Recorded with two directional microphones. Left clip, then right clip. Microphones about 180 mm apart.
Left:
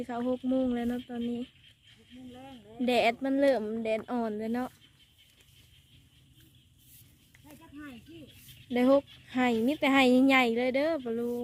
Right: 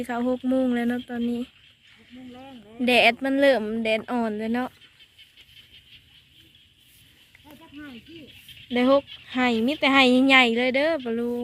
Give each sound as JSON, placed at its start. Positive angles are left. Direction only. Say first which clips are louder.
{"t": 0.3, "sound": "speech", "louder": "right 5 dB", "side_deg": 0}
{"t": 2.3, "sound": "speech", "louder": "right 4 dB", "side_deg": -45}
{"t": 2.8, "sound": "speech", "louder": "right 8 dB", "side_deg": 5}
{"t": 8.7, "sound": "a woman's voice", "louder": "right 5 dB", "side_deg": 15}